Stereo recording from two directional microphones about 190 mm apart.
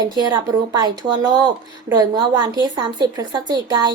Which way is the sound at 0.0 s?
20° right (ahead or behind).